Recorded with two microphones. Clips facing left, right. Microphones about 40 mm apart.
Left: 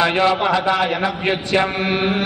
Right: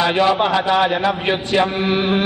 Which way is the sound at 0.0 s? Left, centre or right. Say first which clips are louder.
Even; centre.